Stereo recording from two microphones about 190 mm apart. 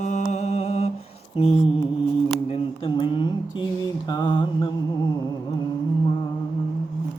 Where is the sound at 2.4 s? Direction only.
30° left (ahead or behind).